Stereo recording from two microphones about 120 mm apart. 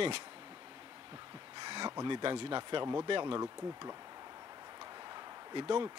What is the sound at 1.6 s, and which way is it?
Speech, 45° right (ahead or behind).